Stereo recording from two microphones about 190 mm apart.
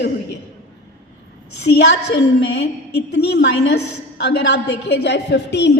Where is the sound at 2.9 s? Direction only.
60° left (ahead or behind).